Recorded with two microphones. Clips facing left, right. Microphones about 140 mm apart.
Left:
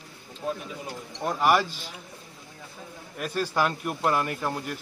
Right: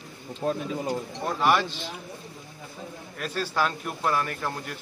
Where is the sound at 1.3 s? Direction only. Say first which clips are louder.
Left 1 dB; 10° left (ahead or behind).